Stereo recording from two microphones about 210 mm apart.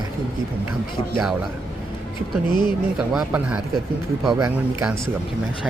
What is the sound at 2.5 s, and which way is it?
Speech, 20° left (ahead or behind).